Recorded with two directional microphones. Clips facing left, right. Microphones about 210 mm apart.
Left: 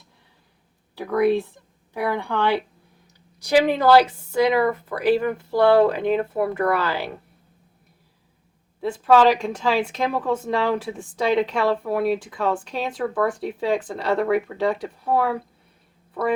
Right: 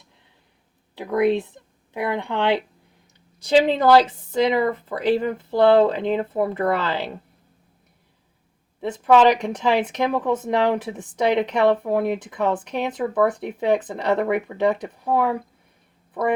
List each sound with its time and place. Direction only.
0.9 s a woman's voice: 20° right (ahead or behind)
8.8 s speech: 20° right (ahead or behind)